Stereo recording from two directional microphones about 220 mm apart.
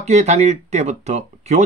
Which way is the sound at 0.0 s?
30° right (ahead or behind).